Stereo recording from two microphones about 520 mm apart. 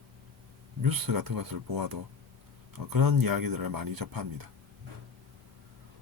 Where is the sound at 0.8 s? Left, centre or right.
Right.